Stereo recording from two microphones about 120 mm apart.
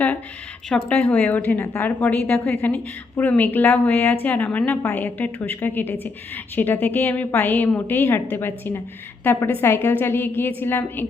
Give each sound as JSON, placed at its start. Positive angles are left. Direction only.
{"t": 0.7, "sound": "a woman's voice", "side_deg": 10}